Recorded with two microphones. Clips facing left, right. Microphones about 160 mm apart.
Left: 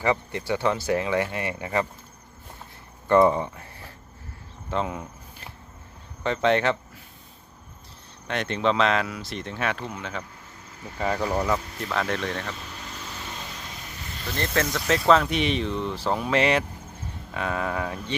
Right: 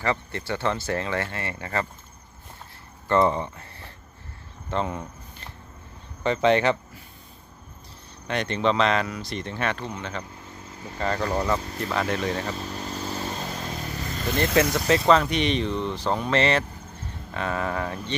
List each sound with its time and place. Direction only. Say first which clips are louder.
0.0 s speech: left 2 dB; 15° left (ahead or behind)
3.1 s speech: left 3 dB; 10° left (ahead or behind)
8.3 s speech: right 1 dB; centre (ahead or behind)
12.5 s vehicle: right 7 dB; 35° right (ahead or behind)
14.5 s speech: right 4 dB; 15° right (ahead or behind)
14.8 s speech: left 3 dB; centre (ahead or behind)